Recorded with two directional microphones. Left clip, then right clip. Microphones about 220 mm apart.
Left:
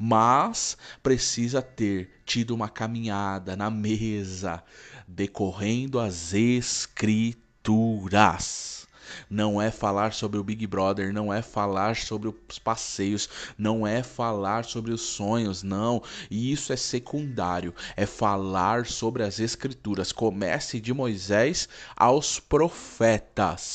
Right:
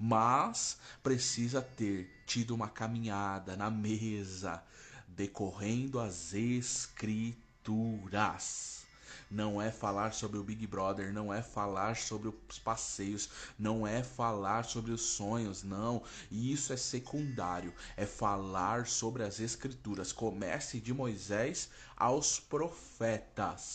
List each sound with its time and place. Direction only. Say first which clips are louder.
0.1 s speech: left 9 dB; 35° left (ahead or behind)